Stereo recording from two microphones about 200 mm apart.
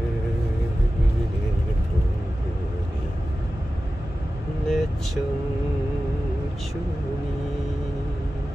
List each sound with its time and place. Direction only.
4.6 s vehicle: centre (ahead or behind)